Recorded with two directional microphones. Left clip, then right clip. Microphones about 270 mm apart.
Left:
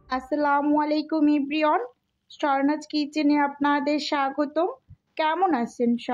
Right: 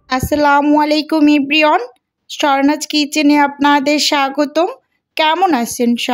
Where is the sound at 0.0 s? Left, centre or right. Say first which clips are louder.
Right 11 dB; right.